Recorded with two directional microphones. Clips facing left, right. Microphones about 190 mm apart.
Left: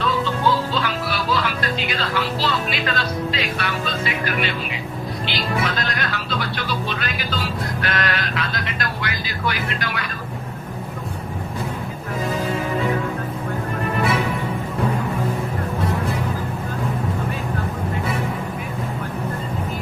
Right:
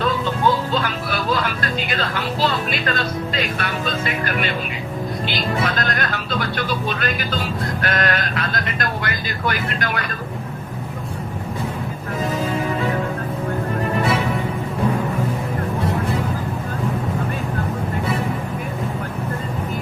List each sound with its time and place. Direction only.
0.7 s speech: 50° right (ahead or behind)